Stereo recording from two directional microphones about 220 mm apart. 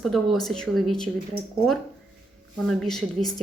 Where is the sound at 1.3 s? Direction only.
40° left (ahead or behind).